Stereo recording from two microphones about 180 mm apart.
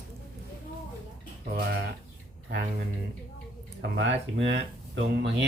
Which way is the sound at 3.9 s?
85° right.